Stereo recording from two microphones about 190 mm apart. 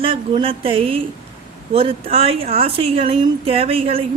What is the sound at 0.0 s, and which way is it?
A woman's voice, 30° right (ahead or behind).